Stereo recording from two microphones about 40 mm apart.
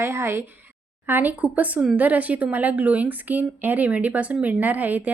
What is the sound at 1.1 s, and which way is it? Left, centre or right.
Speech, right.